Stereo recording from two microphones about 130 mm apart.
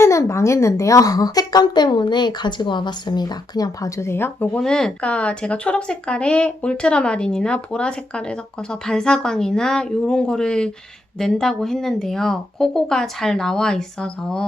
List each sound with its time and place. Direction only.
0.0 s a woman's voice: 20° left (ahead or behind); by 14.4 s 5° left (ahead or behind)